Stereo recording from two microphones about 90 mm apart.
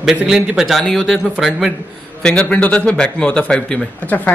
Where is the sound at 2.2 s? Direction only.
10° left (ahead or behind).